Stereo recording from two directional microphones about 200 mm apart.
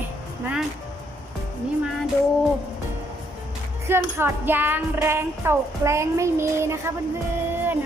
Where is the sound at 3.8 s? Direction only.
10° right (ahead or behind).